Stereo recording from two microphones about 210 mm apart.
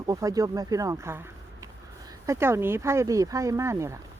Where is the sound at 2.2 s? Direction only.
15° right (ahead or behind).